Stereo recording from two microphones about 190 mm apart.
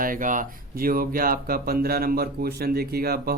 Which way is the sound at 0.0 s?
45° right (ahead or behind).